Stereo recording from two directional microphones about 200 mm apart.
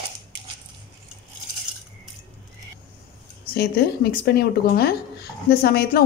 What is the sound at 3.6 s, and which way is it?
A woman's voice, 50° left (ahead or behind).